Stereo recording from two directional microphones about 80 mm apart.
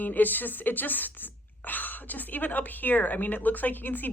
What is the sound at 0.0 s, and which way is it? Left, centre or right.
Speech, left.